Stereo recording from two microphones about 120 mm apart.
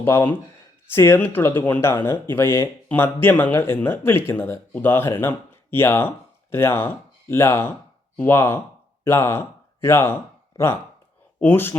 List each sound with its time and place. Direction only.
0.0 s speech: 20° left (ahead or behind)